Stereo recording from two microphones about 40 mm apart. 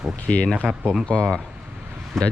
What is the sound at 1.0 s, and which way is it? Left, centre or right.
Speech, left.